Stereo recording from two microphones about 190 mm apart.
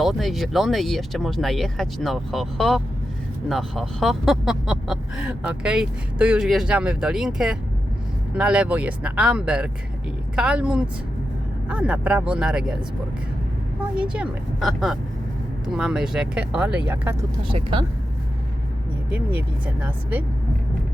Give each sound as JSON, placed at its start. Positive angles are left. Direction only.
{"t": 0.0, "sound": "speech", "side_deg": 0}
{"t": 13.9, "sound": "speech", "side_deg": -5}
{"t": 17.5, "sound": "speech", "side_deg": -25}
{"t": 19.6, "sound": "speech", "side_deg": -10}